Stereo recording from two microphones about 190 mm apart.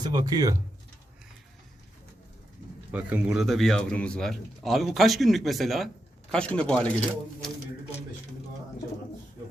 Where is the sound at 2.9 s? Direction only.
5° right (ahead or behind).